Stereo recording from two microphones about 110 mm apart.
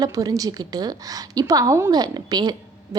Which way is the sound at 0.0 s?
35° right (ahead or behind).